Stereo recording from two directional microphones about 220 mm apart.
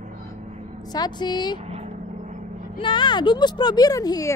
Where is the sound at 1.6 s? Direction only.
30° right (ahead or behind).